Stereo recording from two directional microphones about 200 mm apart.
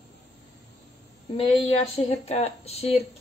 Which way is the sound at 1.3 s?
30° left (ahead or behind).